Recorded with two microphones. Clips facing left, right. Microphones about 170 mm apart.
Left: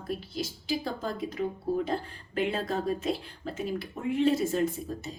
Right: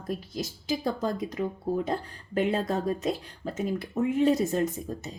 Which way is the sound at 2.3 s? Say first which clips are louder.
Right 3 dB; 40° right (ahead or behind).